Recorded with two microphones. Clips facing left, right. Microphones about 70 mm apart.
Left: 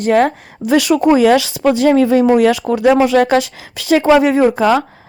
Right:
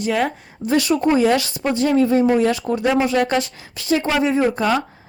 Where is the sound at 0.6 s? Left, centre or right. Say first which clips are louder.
Left 5 dB; left.